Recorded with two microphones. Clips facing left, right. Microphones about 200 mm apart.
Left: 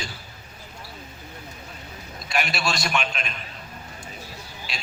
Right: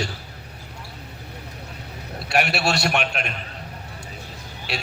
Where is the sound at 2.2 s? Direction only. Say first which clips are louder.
Right 5 dB; 65° right (ahead or behind).